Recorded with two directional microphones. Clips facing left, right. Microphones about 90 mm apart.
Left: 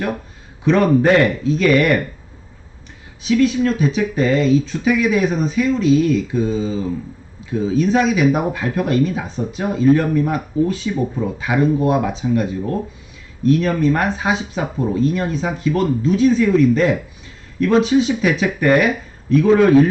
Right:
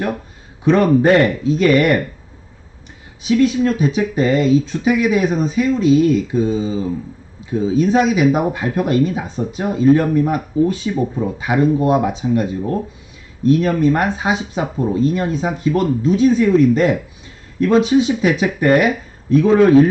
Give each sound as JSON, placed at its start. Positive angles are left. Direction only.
{"t": 0.6, "sound": "a man's voice", "side_deg": -15}
{"t": 3.2, "sound": "speech", "side_deg": -20}